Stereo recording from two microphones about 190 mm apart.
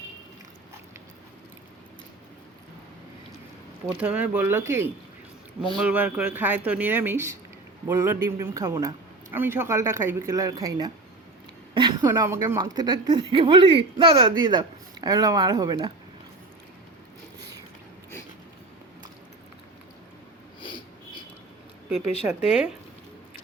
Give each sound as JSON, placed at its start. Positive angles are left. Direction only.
{"t": 4.0, "sound": "speech", "side_deg": -10}
{"t": 22.4, "sound": "speech", "side_deg": -5}